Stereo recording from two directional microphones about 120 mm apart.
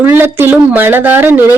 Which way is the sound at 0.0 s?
20° right (ahead or behind).